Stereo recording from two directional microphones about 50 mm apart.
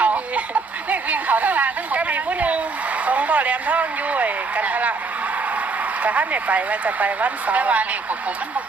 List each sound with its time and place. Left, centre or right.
0.0 s a sound: right
3.1 s speech: right
6.0 s speech: right